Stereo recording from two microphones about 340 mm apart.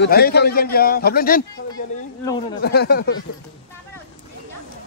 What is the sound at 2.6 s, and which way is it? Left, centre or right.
Speech, left.